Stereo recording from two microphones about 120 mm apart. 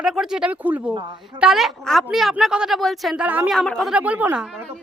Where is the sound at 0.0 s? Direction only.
5° right (ahead or behind).